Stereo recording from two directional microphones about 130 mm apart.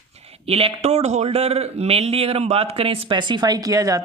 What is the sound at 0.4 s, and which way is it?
Speech, 50° right (ahead or behind).